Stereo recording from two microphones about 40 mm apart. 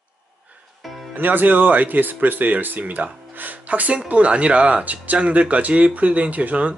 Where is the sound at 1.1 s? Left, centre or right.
Right.